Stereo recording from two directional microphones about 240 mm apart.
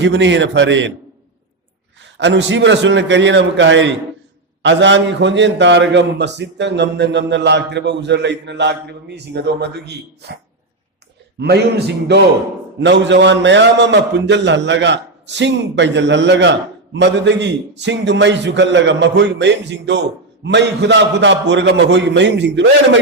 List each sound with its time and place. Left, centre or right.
0.0 s a man's voice: right
2.1 s a man's voice: right
11.3 s a man's voice: right